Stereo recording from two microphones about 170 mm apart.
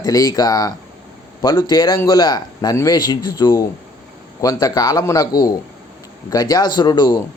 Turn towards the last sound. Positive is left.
turn(degrees=25)  # may be behind; listen again after turning